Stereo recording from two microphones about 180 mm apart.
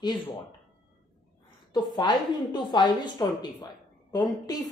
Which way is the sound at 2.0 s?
25° left (ahead or behind).